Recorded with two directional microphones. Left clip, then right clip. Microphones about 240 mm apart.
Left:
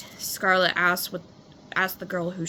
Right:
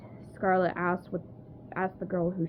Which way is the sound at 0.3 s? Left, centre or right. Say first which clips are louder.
Left 6 dB; centre.